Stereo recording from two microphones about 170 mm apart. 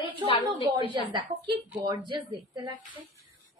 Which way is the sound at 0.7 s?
30° right (ahead or behind).